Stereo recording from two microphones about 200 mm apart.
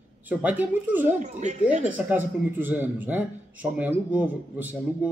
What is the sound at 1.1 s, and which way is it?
Speech, 35° right (ahead or behind).